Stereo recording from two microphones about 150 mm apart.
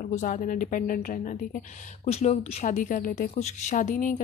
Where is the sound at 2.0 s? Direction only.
45° left (ahead or behind).